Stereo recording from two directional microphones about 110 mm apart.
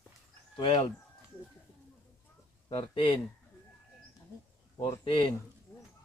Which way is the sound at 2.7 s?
55° left (ahead or behind).